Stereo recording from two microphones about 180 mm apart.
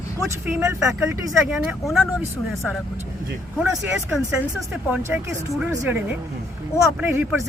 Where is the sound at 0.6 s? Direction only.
15° right (ahead or behind).